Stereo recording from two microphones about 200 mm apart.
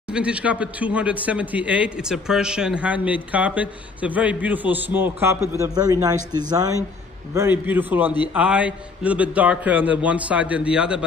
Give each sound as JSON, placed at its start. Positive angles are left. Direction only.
{"t": 0.1, "sound": "a man's voice", "side_deg": -5}